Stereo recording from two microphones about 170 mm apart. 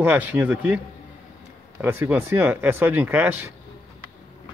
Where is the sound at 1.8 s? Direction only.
10° right (ahead or behind).